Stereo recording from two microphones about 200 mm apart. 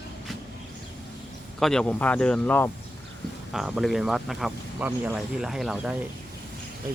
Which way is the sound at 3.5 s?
Centre (ahead or behind).